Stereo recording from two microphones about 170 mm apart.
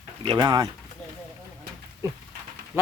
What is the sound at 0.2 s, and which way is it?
Speech, 25° right (ahead or behind).